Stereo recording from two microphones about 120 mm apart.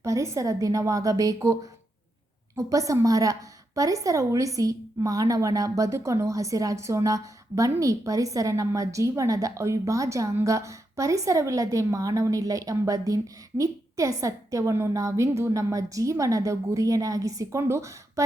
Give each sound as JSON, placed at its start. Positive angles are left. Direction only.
{"t": 0.0, "sound": "a woman's voice", "side_deg": -25}